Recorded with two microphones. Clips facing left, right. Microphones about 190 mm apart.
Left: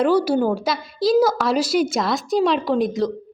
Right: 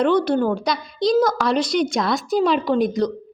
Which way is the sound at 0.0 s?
5° left (ahead or behind).